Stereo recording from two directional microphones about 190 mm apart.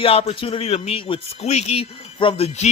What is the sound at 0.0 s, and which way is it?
Speech, 30° left (ahead or behind).